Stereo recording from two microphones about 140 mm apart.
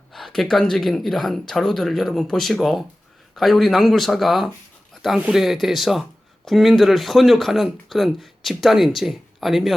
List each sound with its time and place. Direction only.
0.1 s speech: centre (ahead or behind)